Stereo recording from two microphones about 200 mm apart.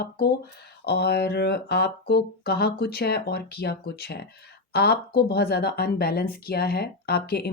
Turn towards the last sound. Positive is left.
turn(degrees=50)  # may be behind; listen again after turning